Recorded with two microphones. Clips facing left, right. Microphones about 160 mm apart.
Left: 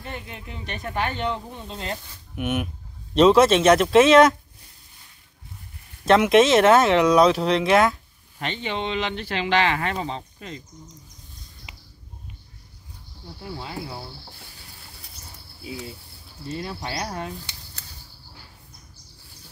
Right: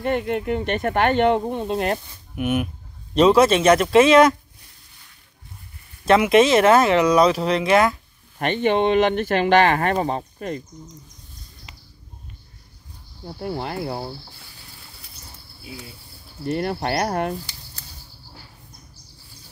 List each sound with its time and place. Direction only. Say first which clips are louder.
0.0 s speech: right 14 dB; 60° right (ahead or behind)
2.3 s speech: right 3 dB; centre (ahead or behind)
6.0 s speech: right 1 dB; centre (ahead or behind)
8.4 s speech: right 9 dB; 55° right (ahead or behind)
13.4 s speech: right 7 dB; 60° right (ahead or behind)
16.4 s speech: right 8 dB; 65° right (ahead or behind)